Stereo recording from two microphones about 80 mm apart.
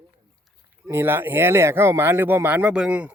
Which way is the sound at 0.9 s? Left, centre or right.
Right.